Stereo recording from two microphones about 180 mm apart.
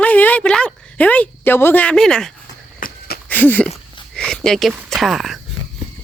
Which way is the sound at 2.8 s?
50° left (ahead or behind).